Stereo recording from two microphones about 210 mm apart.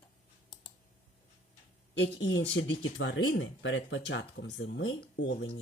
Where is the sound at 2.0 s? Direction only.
60° left (ahead or behind).